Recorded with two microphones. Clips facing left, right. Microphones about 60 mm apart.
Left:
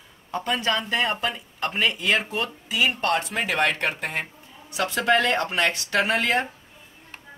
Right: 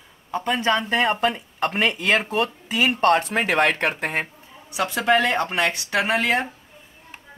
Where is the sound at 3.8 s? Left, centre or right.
Right.